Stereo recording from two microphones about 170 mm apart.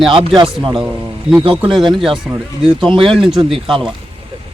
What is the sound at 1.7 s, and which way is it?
Speech, centre (ahead or behind).